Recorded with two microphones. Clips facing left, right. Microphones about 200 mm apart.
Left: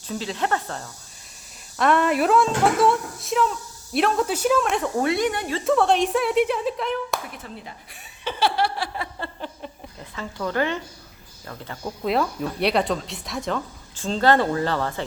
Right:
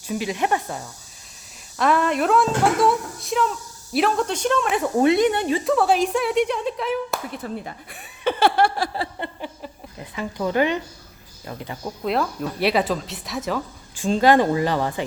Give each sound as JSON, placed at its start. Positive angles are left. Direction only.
{"t": 0.1, "sound": "speech", "side_deg": -15}
{"t": 1.8, "sound": "speech", "side_deg": 0}
{"t": 4.9, "sound": "speech", "side_deg": -20}
{"t": 5.6, "sound": "speech", "side_deg": 0}
{"t": 7.4, "sound": "a sound", "side_deg": -50}
{"t": 9.1, "sound": "a sound", "side_deg": -20}
{"t": 10.0, "sound": "speech", "side_deg": -15}
{"t": 11.9, "sound": "speech", "side_deg": 0}